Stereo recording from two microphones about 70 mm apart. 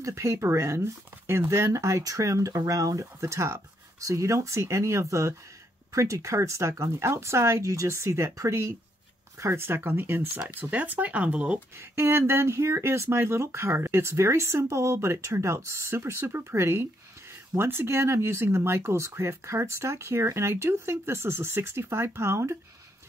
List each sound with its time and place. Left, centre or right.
0.0 s speech: right; by 11.6 s centre
11.9 s speech: right